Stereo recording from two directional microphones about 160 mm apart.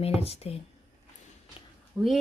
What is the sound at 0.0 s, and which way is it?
Speech, 40° left (ahead or behind).